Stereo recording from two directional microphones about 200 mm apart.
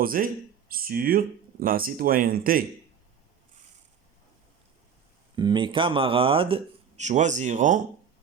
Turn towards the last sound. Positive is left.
turn(degrees=-40)  # may be behind; listen again after turning